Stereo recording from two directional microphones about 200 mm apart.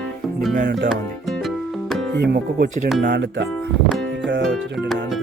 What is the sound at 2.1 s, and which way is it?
Speech, 55° right (ahead or behind).